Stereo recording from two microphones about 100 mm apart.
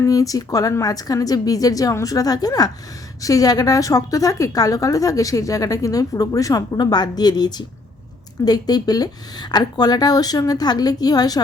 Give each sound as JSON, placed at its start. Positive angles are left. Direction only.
{"t": 0.0, "sound": "a woman's voice", "side_deg": 35}